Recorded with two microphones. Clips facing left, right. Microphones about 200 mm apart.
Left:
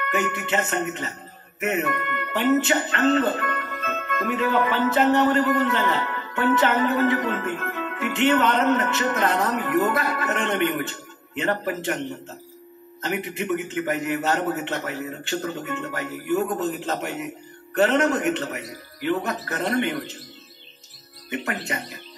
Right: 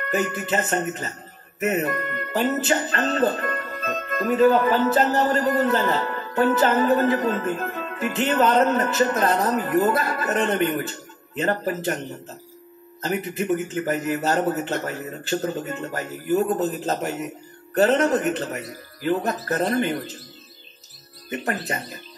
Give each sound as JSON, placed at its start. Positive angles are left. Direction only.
{"t": 0.1, "sound": "music", "side_deg": -35}
{"t": 13.0, "sound": "music", "side_deg": -35}
{"t": 21.3, "sound": "music", "side_deg": -35}